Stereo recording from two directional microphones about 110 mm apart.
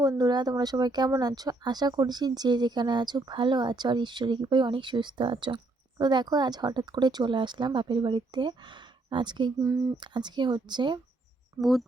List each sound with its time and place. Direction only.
0.0 s speech: 35° right (ahead or behind)
11.6 s speech: centre (ahead or behind)